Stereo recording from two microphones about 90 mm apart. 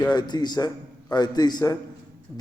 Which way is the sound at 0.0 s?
50° left (ahead or behind).